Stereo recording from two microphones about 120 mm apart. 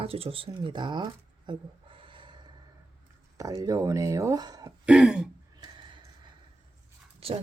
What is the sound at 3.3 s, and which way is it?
Speech, 30° right (ahead or behind).